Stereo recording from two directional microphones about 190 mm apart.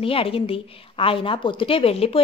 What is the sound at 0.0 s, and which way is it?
A woman's voice, 30° left (ahead or behind).